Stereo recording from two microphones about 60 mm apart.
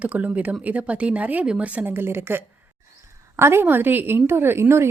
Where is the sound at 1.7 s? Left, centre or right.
Right.